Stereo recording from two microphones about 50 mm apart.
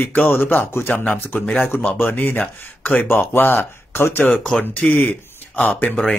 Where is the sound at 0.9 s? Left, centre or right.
Left.